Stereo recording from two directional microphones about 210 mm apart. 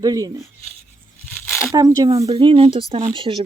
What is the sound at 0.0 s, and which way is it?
Speech, 15° right (ahead or behind).